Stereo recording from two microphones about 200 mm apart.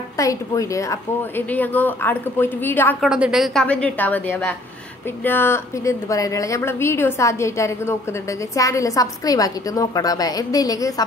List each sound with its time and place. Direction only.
0.2 s a woman's voice: 15° left (ahead or behind)
3.0 s a woman's voice: 5° right (ahead or behind); by 11.1 s 20° left (ahead or behind)